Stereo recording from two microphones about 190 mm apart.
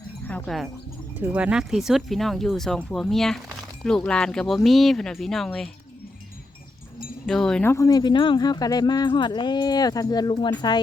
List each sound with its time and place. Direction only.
0.3 s speech: 5° left (ahead or behind)
7.3 s speech: 5° left (ahead or behind); by 10.8 s 20° left (ahead or behind)